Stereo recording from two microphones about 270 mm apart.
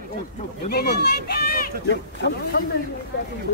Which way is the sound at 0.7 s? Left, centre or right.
Left.